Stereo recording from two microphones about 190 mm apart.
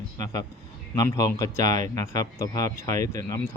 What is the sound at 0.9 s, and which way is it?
A man's voice, 20° left (ahead or behind).